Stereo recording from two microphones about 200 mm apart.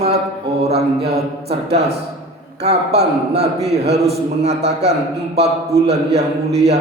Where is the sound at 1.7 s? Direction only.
55° right (ahead or behind).